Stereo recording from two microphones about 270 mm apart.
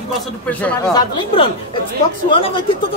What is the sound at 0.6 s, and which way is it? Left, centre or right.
Speech, centre.